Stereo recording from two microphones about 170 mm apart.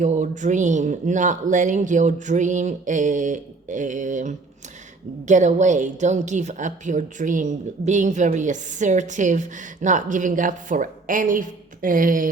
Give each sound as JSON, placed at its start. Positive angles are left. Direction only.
{"t": 0.0, "sound": "a woman's voice", "side_deg": -45}